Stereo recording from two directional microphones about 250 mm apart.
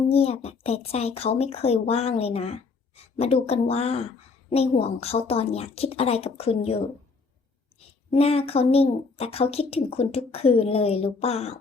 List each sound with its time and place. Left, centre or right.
0.1 s speech: left
8.1 s speech: left